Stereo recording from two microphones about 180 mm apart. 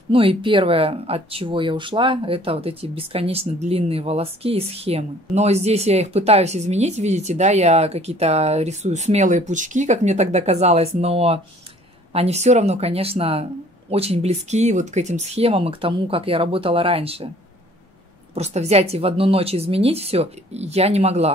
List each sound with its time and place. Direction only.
0.1 s speech: 30° right (ahead or behind)
18.3 s speech: 35° right (ahead or behind)